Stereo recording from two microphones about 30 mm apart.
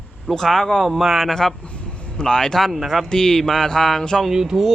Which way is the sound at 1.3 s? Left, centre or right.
Centre.